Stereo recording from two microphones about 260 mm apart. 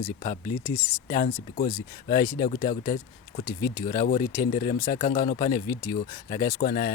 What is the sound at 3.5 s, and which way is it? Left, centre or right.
Speech, centre.